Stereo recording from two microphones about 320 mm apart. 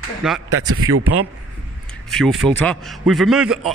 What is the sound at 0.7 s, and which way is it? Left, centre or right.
Speech, right.